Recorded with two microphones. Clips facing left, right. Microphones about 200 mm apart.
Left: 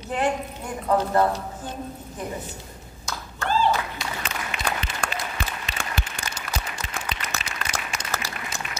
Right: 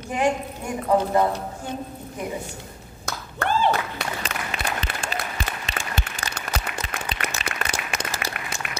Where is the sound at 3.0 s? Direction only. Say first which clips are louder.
Right 2 dB; 60° right (ahead or behind).